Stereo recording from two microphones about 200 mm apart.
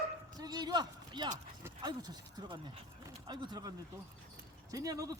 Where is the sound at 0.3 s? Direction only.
20° right (ahead or behind).